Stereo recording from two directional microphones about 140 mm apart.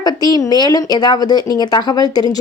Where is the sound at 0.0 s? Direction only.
30° left (ahead or behind).